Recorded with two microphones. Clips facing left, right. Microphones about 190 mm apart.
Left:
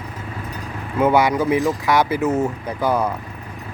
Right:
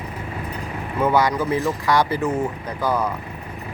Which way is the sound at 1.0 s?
10° left (ahead or behind).